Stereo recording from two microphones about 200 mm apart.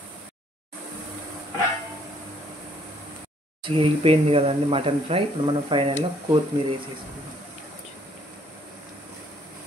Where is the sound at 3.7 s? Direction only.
25° right (ahead or behind).